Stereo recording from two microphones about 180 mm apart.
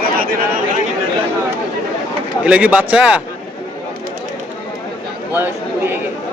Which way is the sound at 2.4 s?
5° right (ahead or behind).